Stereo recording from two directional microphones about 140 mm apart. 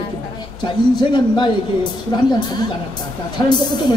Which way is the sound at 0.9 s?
35° left (ahead or behind).